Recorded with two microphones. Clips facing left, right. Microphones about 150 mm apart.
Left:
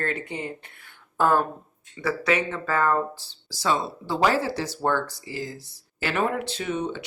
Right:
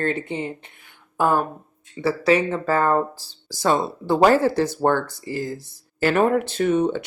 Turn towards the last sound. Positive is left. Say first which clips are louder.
# right 9 dB
turn(degrees=-50)  # may be behind; listen again after turning